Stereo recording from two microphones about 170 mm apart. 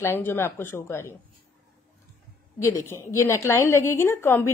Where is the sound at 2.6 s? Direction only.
15° left (ahead or behind).